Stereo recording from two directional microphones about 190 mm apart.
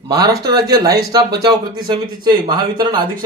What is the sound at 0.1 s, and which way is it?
Speech, 20° right (ahead or behind).